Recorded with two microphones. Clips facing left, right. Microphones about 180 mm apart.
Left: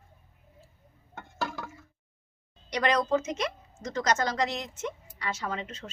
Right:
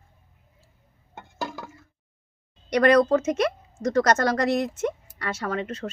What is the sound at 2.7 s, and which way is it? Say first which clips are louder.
Speech: right 8 dB; 60° right (ahead or behind).